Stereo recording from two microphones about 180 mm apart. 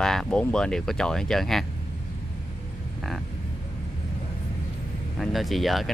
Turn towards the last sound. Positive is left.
turn(degrees=0)  # may be behind; listen again after turning